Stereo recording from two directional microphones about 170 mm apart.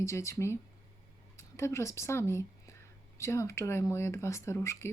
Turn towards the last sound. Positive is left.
turn(degrees=15)  # may be behind; listen again after turning